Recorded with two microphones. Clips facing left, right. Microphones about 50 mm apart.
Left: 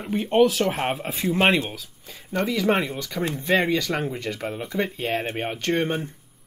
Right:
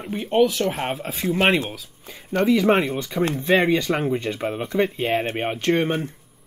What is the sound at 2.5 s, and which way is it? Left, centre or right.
Speech, right.